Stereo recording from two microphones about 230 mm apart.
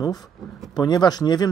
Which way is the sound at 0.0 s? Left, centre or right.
Centre.